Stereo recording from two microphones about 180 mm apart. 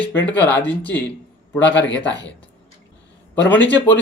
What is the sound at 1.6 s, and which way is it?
Speech, 90° left.